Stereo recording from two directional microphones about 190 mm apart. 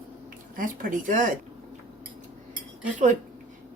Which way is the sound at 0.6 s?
45° right (ahead or behind).